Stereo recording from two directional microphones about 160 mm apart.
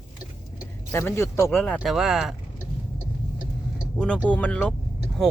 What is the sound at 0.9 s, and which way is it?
Speech, 15° left (ahead or behind).